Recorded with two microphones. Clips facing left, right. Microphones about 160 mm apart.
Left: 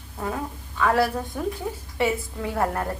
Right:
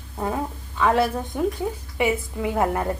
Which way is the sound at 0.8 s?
20° right (ahead or behind).